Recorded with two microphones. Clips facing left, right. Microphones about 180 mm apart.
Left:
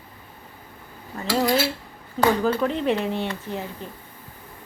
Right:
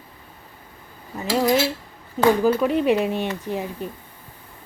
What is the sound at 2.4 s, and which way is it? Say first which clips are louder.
Speech: right 4 dB; 10° right (ahead or behind).